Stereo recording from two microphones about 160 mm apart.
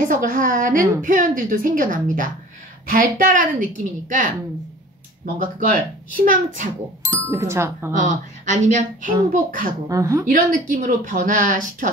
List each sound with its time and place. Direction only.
0.0 s a woman's voice: 55° right (ahead or behind)
7.1 s speech: 15° right (ahead or behind)
7.9 s a woman's voice: 50° right (ahead or behind)
9.8 s a woman's voice: 20° right (ahead or behind)
10.2 s a woman's voice: 60° right (ahead or behind)